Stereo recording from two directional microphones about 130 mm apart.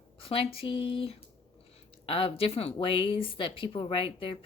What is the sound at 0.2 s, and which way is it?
Speech, 45° left (ahead or behind).